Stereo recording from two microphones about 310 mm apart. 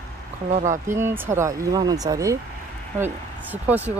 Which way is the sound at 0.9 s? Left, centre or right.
Centre.